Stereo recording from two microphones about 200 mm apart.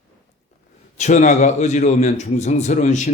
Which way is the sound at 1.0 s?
35° left (ahead or behind).